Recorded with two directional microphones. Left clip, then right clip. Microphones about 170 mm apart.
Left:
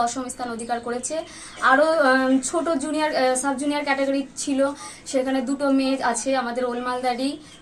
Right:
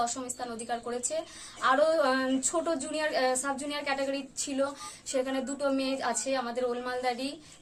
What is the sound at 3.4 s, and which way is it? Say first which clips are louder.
A woman's voice: left 9 dB; 35° right (ahead or behind).